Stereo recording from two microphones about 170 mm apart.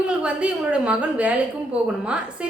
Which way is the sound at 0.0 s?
5° right (ahead or behind).